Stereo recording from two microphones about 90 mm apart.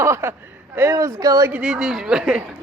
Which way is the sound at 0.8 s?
35° right (ahead or behind).